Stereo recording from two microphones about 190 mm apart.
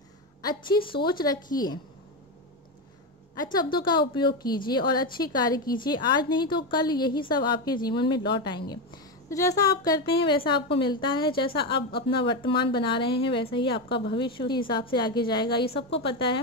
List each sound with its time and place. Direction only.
0.4 s a woman's voice: 20° left (ahead or behind)
3.7 s a woman's voice: 25° left (ahead or behind)